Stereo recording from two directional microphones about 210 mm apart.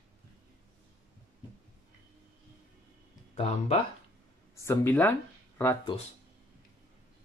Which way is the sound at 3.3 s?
30° left (ahead or behind).